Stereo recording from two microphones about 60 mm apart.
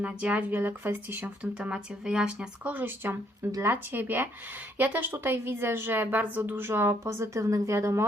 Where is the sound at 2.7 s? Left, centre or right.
Right.